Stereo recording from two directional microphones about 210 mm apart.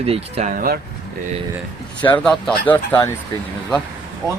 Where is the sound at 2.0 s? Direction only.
5° left (ahead or behind).